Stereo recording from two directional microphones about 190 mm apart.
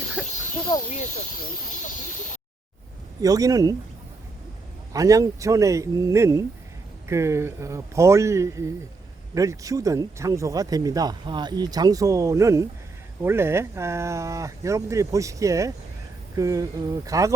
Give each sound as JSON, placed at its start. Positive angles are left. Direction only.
{"t": 0.7, "sound": "speech", "side_deg": 20}
{"t": 3.2, "sound": "speech", "side_deg": -20}
{"t": 4.9, "sound": "speech", "side_deg": -15}